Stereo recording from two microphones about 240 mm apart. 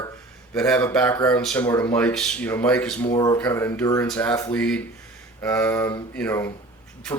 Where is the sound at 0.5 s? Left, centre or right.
Centre.